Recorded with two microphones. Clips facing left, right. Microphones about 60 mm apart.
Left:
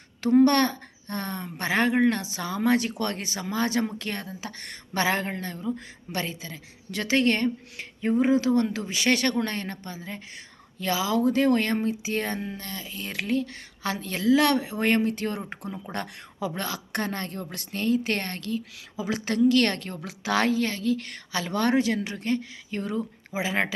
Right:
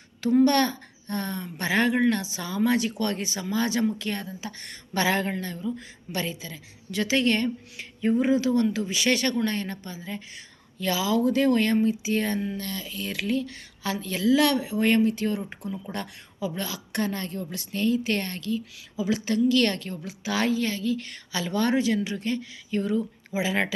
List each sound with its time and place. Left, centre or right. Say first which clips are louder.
0.2 s speech: left 1 dB; left
4.9 s a man's voice: right 1 dB; left
20.1 s speech: left 2 dB; left